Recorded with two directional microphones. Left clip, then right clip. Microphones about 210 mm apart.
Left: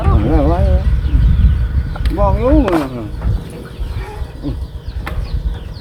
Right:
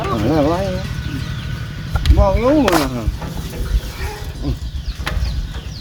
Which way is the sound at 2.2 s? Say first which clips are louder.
Even; 10° right (ahead or behind).